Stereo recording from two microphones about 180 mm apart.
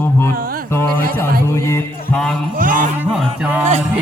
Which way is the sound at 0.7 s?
10° left (ahead or behind).